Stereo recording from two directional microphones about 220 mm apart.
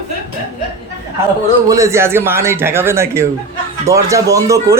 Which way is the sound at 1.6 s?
15° right (ahead or behind).